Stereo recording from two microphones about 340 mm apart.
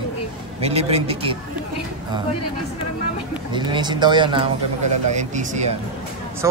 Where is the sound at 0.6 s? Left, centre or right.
Centre.